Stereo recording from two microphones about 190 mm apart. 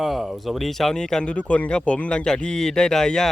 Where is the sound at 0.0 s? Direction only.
Centre (ahead or behind).